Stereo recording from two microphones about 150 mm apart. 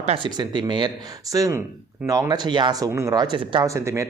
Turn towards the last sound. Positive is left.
turn(degrees=-20)  # may be behind; listen again after turning